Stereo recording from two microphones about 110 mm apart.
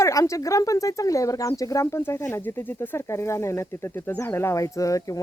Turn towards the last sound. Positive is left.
turn(degrees=30)  # may be behind; listen again after turning